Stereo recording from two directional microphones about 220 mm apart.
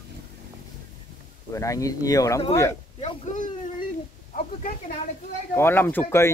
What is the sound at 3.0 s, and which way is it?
Speech, 30° left (ahead or behind).